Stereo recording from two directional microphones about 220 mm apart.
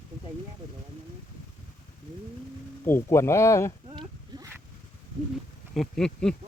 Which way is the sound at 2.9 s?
10° left (ahead or behind).